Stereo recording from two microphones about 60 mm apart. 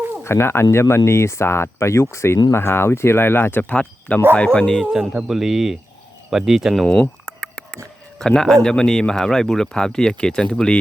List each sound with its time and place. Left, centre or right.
0.3 s speech: left; by 4.9 s centre
5.0 s speech: centre
6.8 s speech: left
7.3 s a sound: centre
8.2 s speech: centre